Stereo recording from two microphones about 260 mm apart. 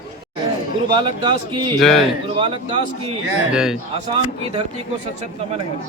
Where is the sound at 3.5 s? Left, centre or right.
Centre.